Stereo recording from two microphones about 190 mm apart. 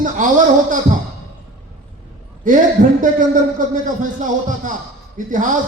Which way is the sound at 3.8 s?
45° right (ahead or behind).